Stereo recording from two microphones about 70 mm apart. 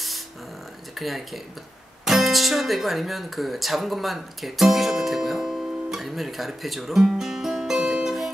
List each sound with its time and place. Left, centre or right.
0.9 s speech: centre